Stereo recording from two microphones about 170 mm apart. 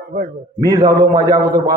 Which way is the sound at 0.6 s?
25° right (ahead or behind).